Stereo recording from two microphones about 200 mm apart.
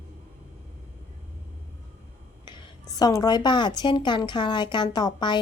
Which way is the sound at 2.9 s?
20° left (ahead or behind).